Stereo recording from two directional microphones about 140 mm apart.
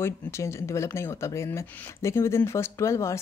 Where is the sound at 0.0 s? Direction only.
20° left (ahead or behind).